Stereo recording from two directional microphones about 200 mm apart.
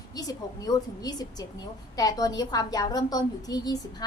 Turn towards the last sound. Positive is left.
turn(degrees=20)  # may be behind; listen again after turning